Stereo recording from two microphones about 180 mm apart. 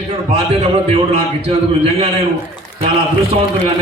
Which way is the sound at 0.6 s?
35° right (ahead or behind).